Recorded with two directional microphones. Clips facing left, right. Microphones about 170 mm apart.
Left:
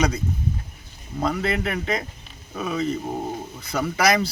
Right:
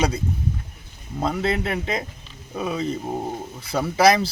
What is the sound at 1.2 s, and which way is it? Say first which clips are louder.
Speech: right 1 dB; 25° right (ahead or behind).